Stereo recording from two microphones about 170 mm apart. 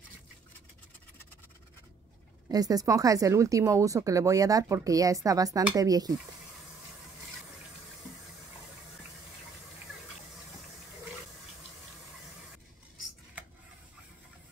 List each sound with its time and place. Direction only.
2.5 s speech: 20° right (ahead or behind)